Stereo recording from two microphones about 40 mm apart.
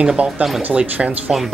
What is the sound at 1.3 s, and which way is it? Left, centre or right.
Speech, centre.